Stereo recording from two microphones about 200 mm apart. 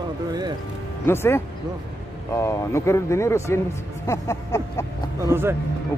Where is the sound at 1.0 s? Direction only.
10° left (ahead or behind).